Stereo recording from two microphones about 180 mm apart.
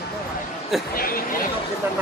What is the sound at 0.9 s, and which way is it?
Speech, 55° left (ahead or behind).